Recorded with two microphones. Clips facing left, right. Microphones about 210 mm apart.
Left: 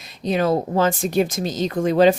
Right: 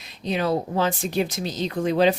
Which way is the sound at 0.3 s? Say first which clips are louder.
Left 4 dB; 45° left (ahead or behind).